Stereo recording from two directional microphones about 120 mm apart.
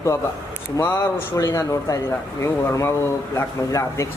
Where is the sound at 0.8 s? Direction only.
20° left (ahead or behind).